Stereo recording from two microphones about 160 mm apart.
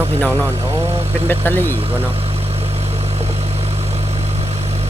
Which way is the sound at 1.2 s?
10° left (ahead or behind).